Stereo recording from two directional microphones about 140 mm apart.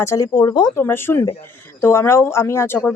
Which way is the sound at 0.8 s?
15° left (ahead or behind).